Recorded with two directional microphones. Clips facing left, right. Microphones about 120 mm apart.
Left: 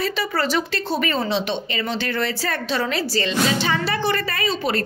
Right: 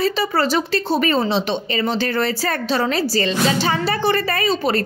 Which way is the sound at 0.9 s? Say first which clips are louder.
Right 3 dB; 35° right (ahead or behind).